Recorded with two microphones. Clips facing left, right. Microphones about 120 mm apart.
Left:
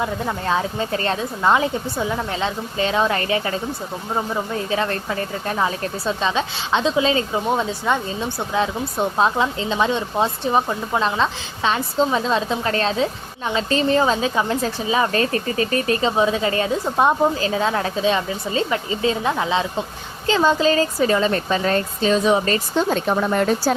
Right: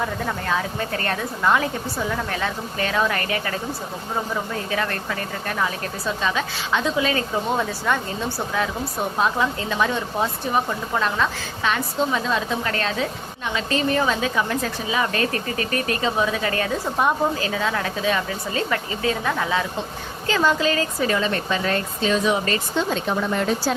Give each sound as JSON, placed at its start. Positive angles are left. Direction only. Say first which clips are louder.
{"t": 0.0, "sound": "speech", "louder": "left 2 dB", "side_deg": 25}
{"t": 4.7, "sound": "speech", "louder": "left 3 dB", "side_deg": 25}